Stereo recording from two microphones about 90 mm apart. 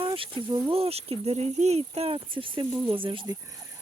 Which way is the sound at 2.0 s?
75° right (ahead or behind).